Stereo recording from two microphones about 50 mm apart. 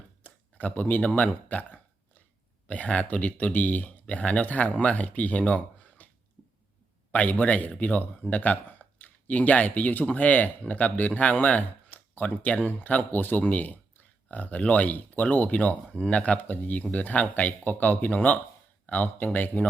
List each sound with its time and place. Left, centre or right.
0.2 s speech: left
7.1 s speech: left